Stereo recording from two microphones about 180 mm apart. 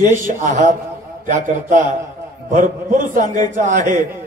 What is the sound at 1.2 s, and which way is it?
A man's voice, 45° right (ahead or behind).